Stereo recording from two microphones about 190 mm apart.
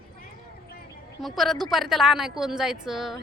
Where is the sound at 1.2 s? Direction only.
Centre (ahead or behind).